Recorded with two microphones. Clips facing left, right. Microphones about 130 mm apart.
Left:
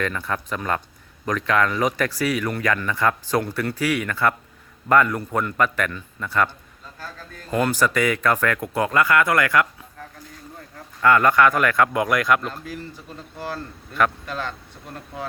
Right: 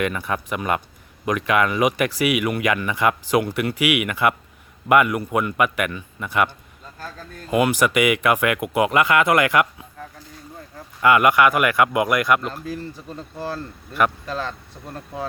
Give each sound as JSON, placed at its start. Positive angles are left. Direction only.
{"t": 0.0, "sound": "speech", "side_deg": -10}
{"t": 7.5, "sound": "speech", "side_deg": -10}
{"t": 11.0, "sound": "speech", "side_deg": -10}
{"t": 14.3, "sound": "speech", "side_deg": -30}